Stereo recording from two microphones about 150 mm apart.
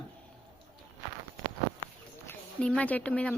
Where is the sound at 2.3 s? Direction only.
10° left (ahead or behind).